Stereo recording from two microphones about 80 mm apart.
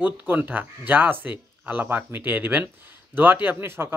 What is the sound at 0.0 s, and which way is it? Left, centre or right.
Speech, right.